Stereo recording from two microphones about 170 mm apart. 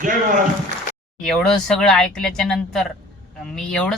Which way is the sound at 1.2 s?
5° left (ahead or behind).